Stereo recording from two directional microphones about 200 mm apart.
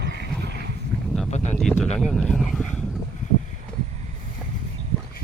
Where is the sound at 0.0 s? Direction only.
60° right (ahead or behind).